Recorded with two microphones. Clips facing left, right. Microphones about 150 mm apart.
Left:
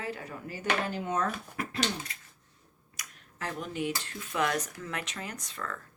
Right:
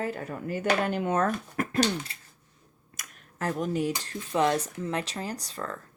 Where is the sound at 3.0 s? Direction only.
45° right (ahead or behind).